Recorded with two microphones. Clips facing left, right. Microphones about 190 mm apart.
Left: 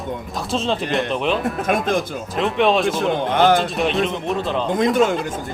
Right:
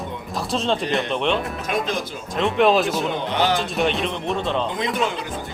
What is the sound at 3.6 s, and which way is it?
Speech, centre (ahead or behind).